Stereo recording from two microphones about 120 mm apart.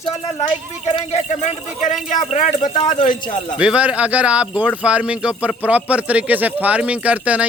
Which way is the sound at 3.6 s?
10° right (ahead or behind).